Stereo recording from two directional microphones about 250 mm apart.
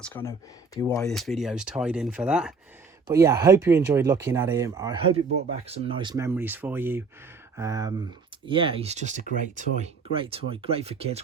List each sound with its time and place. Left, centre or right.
0.0 s speech: centre
1.0 s speech: centre; by 11.2 s right